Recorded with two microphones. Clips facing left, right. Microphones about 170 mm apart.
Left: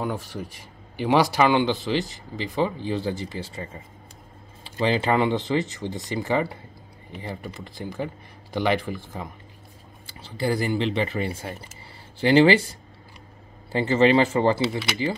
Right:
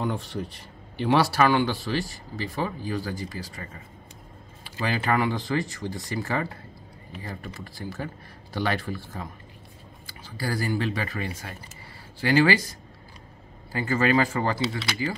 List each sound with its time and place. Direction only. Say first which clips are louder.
0.0 s speech: even; 10° left (ahead or behind); by 3.6 s 25° left (ahead or behind)
4.8 s speech: left 4 dB; 20° left (ahead or behind)